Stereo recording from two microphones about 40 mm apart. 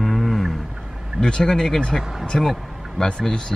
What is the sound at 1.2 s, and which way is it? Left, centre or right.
Speech, centre.